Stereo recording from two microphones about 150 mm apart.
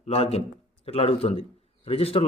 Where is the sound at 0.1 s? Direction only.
45° left (ahead or behind).